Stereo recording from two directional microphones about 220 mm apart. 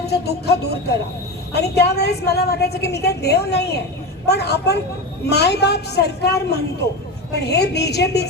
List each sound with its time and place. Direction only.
0.0 s a woman's voice: 50° left (ahead or behind)